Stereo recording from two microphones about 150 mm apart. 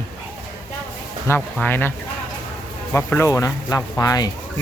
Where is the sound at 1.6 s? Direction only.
15° left (ahead or behind).